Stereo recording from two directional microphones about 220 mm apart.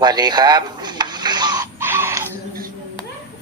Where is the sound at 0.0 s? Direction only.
20° right (ahead or behind).